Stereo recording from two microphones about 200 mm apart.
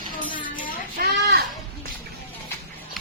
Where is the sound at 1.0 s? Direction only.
50° right (ahead or behind).